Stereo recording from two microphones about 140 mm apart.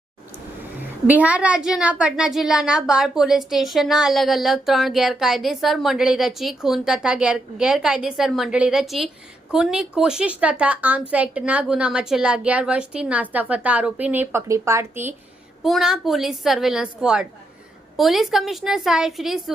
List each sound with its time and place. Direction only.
0.8 s a woman's voice: 10° right (ahead or behind)
15.6 s a woman's voice: centre (ahead or behind)